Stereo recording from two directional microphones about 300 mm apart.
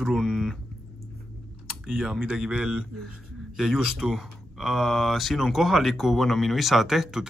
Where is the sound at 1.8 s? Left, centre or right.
Centre.